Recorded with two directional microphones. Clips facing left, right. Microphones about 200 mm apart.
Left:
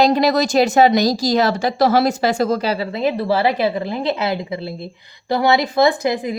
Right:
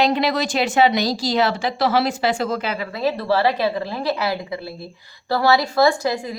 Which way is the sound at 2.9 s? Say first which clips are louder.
Even; 20° left (ahead or behind).